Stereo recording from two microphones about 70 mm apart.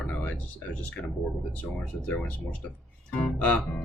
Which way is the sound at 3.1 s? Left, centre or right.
Centre.